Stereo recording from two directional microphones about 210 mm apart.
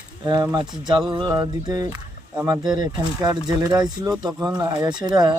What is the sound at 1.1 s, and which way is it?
Speech, 20° right (ahead or behind).